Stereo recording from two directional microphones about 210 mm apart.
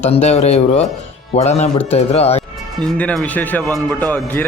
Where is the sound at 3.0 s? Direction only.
5° left (ahead or behind).